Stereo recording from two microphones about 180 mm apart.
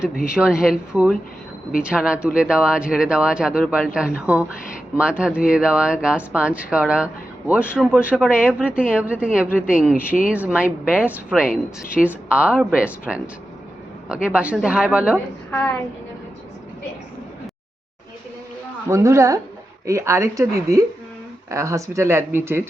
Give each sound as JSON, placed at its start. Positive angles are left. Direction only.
{"t": 0.3, "sound": "speech", "side_deg": -5}
{"t": 14.3, "sound": "speech", "side_deg": -5}
{"t": 15.5, "sound": "a sound", "side_deg": 5}
{"t": 18.9, "sound": "speech", "side_deg": -15}